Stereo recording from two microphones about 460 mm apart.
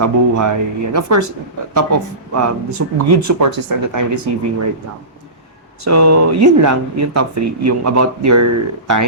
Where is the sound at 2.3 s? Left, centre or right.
Right.